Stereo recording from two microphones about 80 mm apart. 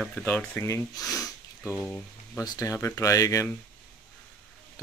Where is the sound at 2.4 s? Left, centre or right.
Left.